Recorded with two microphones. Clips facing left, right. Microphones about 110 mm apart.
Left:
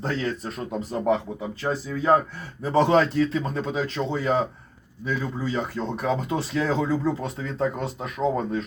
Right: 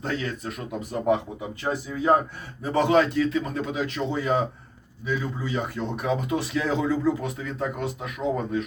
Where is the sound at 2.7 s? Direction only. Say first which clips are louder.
Left 1 dB; 30° left (ahead or behind).